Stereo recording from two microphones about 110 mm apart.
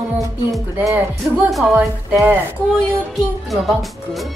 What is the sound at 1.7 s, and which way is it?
Speech, 20° right (ahead or behind).